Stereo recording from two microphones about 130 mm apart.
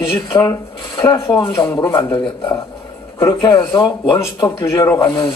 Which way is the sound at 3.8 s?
30° left (ahead or behind).